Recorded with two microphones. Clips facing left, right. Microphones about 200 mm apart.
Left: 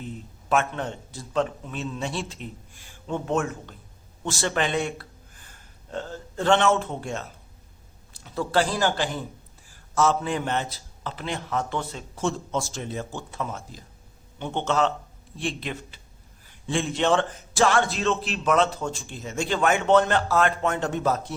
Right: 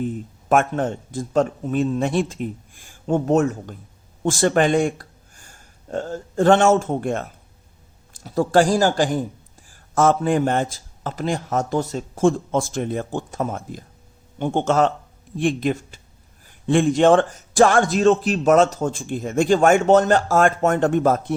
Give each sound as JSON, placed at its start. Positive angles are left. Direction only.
{"t": 0.0, "sound": "a man's voice", "side_deg": -50}